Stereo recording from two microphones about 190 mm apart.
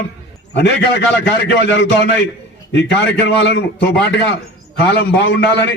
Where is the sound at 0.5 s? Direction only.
70° left (ahead or behind).